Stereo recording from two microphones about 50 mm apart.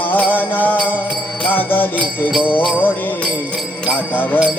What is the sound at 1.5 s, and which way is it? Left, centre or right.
Music, left.